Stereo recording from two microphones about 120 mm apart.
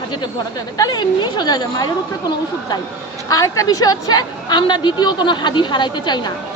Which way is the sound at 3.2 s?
30° left (ahead or behind).